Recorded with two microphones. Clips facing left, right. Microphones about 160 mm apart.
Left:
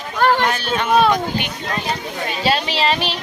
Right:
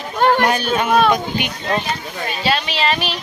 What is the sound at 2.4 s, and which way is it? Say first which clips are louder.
Speech: left 1 dB; 35° left (ahead or behind).